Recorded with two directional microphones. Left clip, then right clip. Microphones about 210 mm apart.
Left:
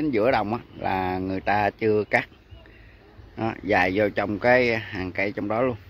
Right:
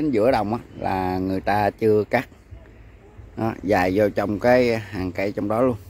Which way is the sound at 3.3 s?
5° right (ahead or behind).